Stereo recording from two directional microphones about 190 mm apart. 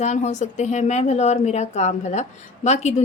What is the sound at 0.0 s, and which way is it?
A woman's voice, 40° left (ahead or behind).